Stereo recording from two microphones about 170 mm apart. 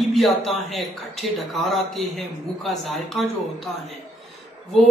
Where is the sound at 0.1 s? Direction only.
Centre (ahead or behind).